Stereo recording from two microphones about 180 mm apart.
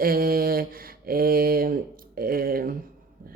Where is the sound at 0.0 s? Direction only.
55° right (ahead or behind).